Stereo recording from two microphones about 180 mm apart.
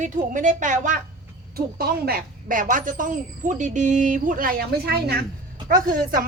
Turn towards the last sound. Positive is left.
turn(degrees=-50)  # may be behind; listen again after turning